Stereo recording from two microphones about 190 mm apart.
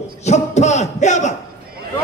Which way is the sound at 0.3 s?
35° left (ahead or behind).